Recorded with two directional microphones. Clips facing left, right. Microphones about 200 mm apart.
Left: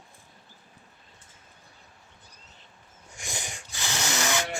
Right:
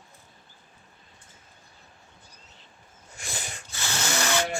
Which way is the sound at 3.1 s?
15° left (ahead or behind).